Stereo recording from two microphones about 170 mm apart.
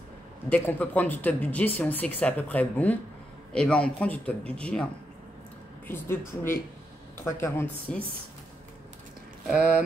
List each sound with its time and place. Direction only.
0.5 s speech: 10° left (ahead or behind)
5.9 s speech: 15° left (ahead or behind)
9.5 s speech: 5° right (ahead or behind)